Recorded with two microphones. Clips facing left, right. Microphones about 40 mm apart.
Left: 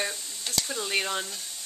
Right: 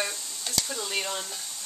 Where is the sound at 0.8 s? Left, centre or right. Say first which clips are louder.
Left 3 dB; left.